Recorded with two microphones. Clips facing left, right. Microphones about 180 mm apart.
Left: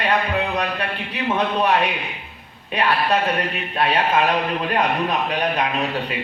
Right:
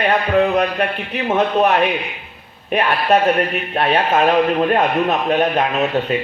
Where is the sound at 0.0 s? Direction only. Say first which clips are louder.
Right 6 dB; 50° right (ahead or behind).